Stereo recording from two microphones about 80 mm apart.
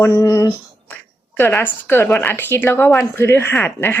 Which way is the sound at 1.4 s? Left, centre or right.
Left.